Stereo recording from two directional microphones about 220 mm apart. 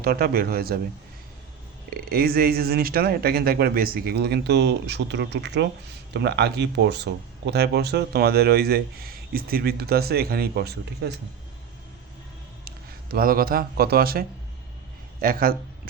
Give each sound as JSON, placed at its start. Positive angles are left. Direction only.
{"t": 0.0, "sound": "speech", "side_deg": -45}
{"t": 1.9, "sound": "speech", "side_deg": -45}
{"t": 12.6, "sound": "a man's voice", "side_deg": -40}